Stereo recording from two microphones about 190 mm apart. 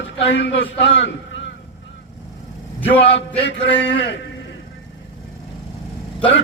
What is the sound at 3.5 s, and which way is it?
Speech, 70° left (ahead or behind).